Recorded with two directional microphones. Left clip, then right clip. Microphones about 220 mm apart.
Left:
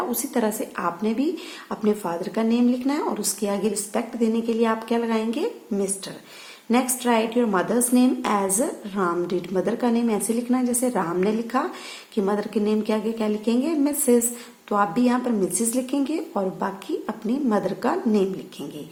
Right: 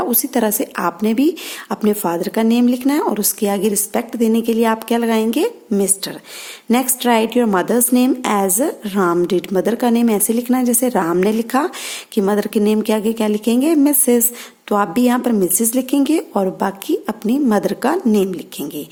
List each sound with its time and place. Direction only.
0.1 s a woman's voice: 45° right (ahead or behind)